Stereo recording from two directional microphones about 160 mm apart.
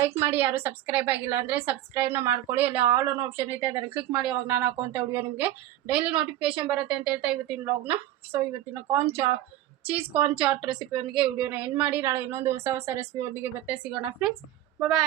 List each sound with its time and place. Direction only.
0.0 s a woman's voice: 15° right (ahead or behind)
6.0 s a woman's voice: 30° right (ahead or behind)
6.6 s a woman's voice: 5° right (ahead or behind)
14.0 s a woman's voice: 5° right (ahead or behind)